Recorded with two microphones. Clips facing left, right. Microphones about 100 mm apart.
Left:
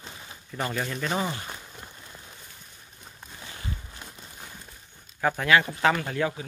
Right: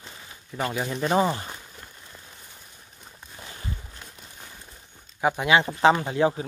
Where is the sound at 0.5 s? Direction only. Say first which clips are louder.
Right 2 dB; 10° right (ahead or behind).